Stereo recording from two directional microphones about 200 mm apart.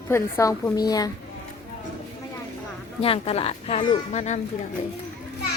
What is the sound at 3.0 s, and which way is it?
A man's voice, 30° left (ahead or behind).